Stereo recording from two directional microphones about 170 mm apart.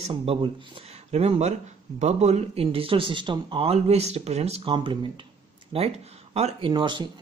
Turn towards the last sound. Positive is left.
turn(degrees=-25)  # may be behind; listen again after turning